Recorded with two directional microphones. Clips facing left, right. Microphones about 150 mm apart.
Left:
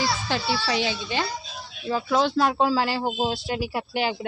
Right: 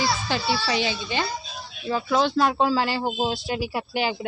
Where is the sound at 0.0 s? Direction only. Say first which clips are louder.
Right 1 dB; centre (ahead or behind).